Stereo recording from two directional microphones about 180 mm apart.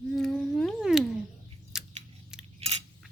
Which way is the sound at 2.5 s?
35° right (ahead or behind).